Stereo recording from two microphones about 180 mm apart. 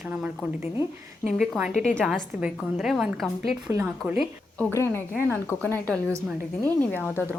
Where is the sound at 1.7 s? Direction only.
40° left (ahead or behind).